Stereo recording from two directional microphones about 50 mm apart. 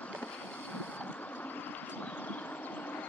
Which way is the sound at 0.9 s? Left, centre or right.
Left.